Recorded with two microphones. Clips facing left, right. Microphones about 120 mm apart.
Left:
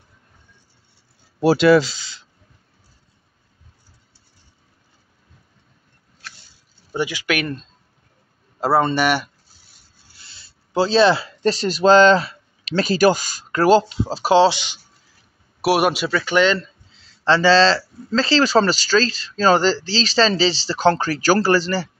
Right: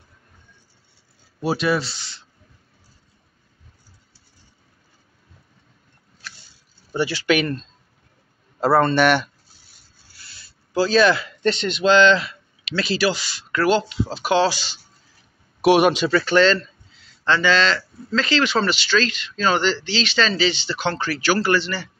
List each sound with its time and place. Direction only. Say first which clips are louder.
1.4 s speech: left 8 dB; 90° left
6.9 s speech: right 2 dB; 15° left (ahead or behind)
8.5 s speech: right 1 dB; 10° left (ahead or behind)
10.3 s speech: left 1 dB; 25° left (ahead or behind)
15.6 s speech: right 2 dB; 5° left (ahead or behind)
16.5 s speech: left 1 dB; 30° left (ahead or behind)